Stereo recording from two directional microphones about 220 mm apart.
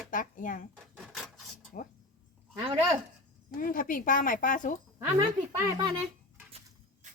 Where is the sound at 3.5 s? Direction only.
40° left (ahead or behind).